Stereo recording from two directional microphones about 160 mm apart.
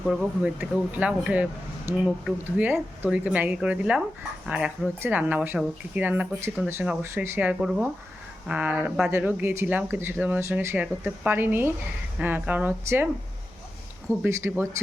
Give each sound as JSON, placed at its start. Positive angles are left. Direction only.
{"t": 0.0, "sound": "speech", "side_deg": 0}
{"t": 14.3, "sound": "speech", "side_deg": -15}